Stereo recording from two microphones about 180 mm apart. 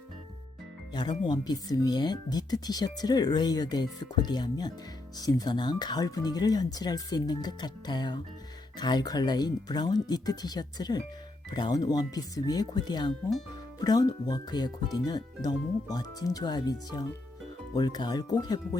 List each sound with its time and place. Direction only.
1.2 s speech: 25° left (ahead or behind)